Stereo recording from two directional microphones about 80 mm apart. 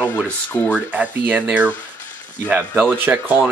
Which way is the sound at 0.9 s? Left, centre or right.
Right.